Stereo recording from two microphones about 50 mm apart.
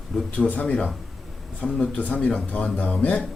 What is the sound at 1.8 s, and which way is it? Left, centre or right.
Speech, left.